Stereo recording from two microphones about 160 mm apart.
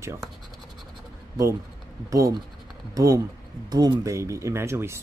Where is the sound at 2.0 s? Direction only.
20° right (ahead or behind).